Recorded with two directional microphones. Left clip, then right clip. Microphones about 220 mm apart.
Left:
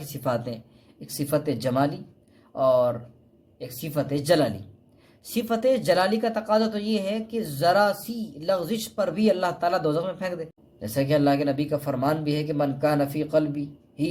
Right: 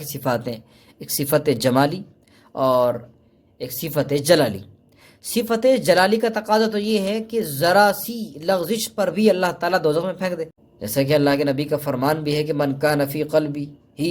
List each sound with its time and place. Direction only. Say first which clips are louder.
0.1 s a man's voice: right 4 dB; 25° right (ahead or behind)